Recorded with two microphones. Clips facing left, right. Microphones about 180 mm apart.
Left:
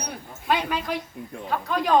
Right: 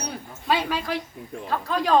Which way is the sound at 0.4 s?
Centre (ahead or behind).